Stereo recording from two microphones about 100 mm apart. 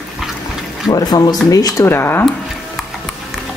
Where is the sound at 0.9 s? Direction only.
40° left (ahead or behind).